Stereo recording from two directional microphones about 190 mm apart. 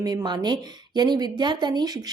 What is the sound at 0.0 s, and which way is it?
Speech, 20° right (ahead or behind).